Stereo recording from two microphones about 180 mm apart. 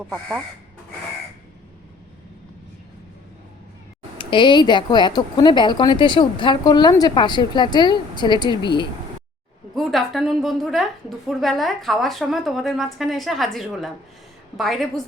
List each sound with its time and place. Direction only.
0.0 s a woman's voice: centre (ahead or behind)
4.2 s speech: 25° left (ahead or behind)
9.7 s a woman's voice: centre (ahead or behind)